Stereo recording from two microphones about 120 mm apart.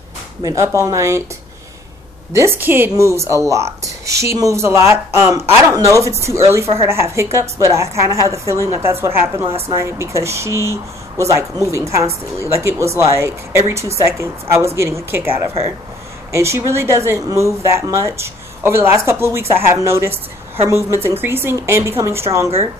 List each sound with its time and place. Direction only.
0.4 s speech: 30° right (ahead or behind)
2.3 s speech: 20° right (ahead or behind)